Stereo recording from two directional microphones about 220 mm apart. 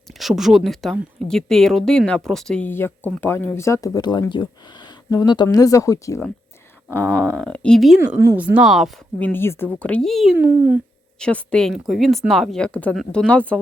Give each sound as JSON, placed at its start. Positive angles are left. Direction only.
{"t": 0.2, "sound": "speech", "side_deg": 0}
{"t": 10.3, "sound": "speech", "side_deg": -10}
{"t": 11.2, "sound": "speech", "side_deg": 5}